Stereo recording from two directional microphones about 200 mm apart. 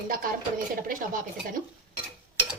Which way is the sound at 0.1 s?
45° right (ahead or behind).